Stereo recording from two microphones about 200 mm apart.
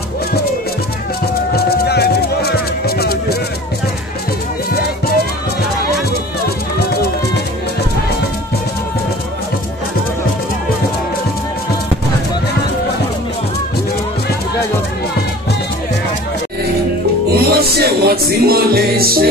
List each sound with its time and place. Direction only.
1.5 s music: 55° left (ahead or behind)
17.3 s music: 50° right (ahead or behind)